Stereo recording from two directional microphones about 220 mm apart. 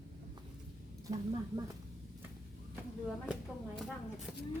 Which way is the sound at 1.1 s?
35° right (ahead or behind).